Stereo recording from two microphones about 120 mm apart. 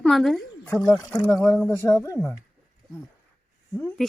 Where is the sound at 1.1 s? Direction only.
15° left (ahead or behind).